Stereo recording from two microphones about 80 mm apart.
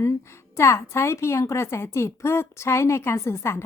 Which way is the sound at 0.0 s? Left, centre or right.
Left.